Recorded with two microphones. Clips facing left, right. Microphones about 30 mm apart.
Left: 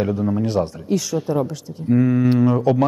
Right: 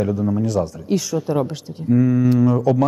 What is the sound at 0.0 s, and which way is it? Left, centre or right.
Speech, left.